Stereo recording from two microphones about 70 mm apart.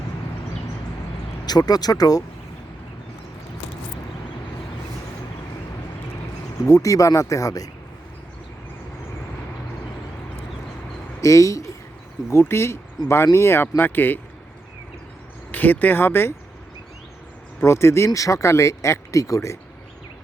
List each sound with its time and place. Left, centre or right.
1.5 s speech: left
6.7 s speech: left
11.2 s speech: left
12.3 s speech: left
15.5 s speech: left
17.7 s speech: left